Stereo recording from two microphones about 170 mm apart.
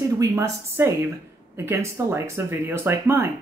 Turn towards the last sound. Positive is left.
turn(degrees=-15)  # may be behind; listen again after turning